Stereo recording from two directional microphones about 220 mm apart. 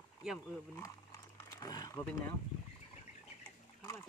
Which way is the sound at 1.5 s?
15° left (ahead or behind).